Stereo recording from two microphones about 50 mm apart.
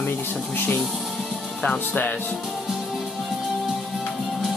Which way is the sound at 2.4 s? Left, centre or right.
Centre.